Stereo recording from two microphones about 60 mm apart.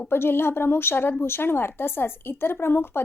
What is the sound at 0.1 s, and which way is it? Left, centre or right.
Speech, left.